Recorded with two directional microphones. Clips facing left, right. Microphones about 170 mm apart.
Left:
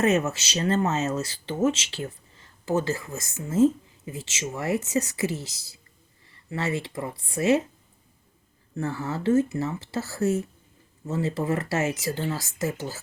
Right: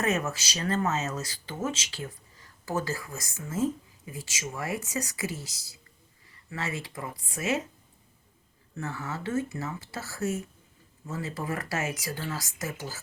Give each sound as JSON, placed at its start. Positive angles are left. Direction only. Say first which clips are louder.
{"t": 0.0, "sound": "speech", "louder": "left 6 dB", "side_deg": 25}
{"t": 8.7, "sound": "speech", "louder": "left 6 dB", "side_deg": 35}